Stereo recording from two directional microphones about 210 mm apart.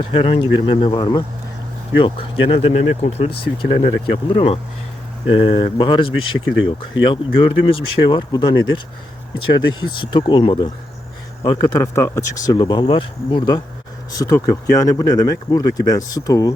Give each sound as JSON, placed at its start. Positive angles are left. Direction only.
{"t": 0.0, "sound": "speech", "side_deg": 25}